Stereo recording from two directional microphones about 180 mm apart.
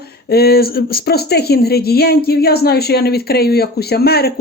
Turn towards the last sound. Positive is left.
turn(degrees=60)  # may be behind; listen again after turning